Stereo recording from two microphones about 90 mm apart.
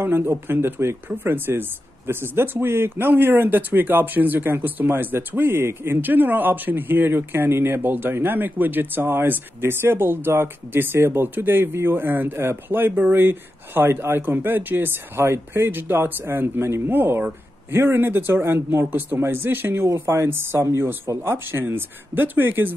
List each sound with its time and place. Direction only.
0.0 s speech: 25° right (ahead or behind)